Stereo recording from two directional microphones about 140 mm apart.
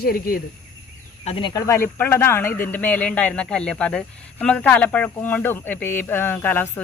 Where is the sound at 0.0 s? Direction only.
90° left.